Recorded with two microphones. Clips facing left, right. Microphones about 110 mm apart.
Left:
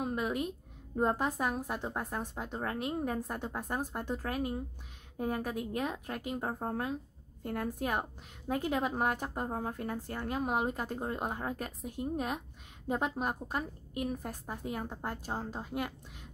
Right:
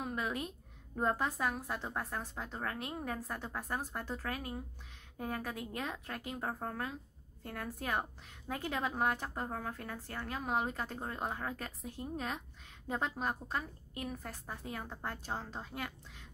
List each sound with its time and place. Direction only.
0.1 s a woman's voice: 20° left (ahead or behind)
6.4 s a woman's voice: 25° left (ahead or behind)
7.4 s a woman's voice: 45° left (ahead or behind)
7.8 s a woman's voice: 15° left (ahead or behind)
9.5 s a woman's voice: 30° left (ahead or behind); by 15.9 s 10° left (ahead or behind)